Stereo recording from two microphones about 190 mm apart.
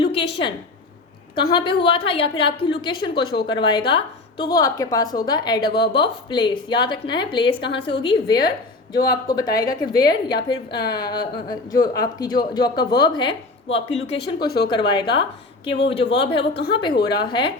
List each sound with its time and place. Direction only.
0.0 s a sound: 30° left (ahead or behind)
1.4 s a woman's voice: 25° left (ahead or behind)
14.4 s speech: 55° left (ahead or behind)
14.8 s a woman's voice: 25° left (ahead or behind)